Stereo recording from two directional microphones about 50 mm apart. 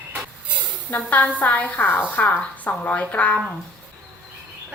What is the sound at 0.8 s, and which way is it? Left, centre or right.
A woman's voice, left.